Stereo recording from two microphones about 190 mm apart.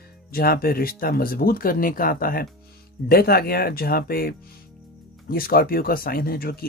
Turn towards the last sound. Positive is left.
turn(degrees=50)  # may be behind; listen again after turning